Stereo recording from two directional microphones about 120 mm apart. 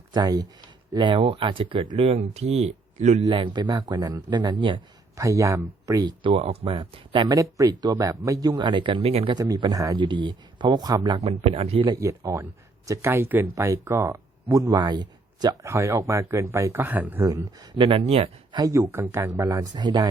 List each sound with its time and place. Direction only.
0.1 s speech: 35° right (ahead or behind); by 3.2 s 75° right (ahead or behind)
3.2 s speech: 40° right (ahead or behind)
5.1 s speech: 25° right (ahead or behind)
6.3 s speech: 55° right (ahead or behind)
9.3 s speech: 30° right (ahead or behind)
11.2 s speech: 55° right (ahead or behind)
11.9 s speech: 25° right (ahead or behind)
15.6 s speech: 25° right (ahead or behind)
17.7 s speech: 40° right (ahead or behind)
18.0 s speech: 55° right (ahead or behind)
18.5 s speech: 30° right (ahead or behind)